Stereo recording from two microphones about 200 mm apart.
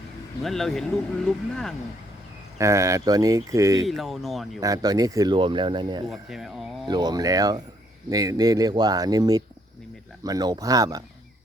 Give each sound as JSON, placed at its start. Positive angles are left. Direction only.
{"t": 0.4, "sound": "speech", "side_deg": 0}
{"t": 2.6, "sound": "speech", "side_deg": -15}
{"t": 3.8, "sound": "speech", "side_deg": 0}
{"t": 4.6, "sound": "speech", "side_deg": -15}
{"t": 6.1, "sound": "speech", "side_deg": 0}
{"t": 6.8, "sound": "speech", "side_deg": -20}